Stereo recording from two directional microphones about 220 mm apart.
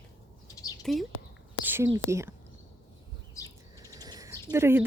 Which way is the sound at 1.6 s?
10° right (ahead or behind).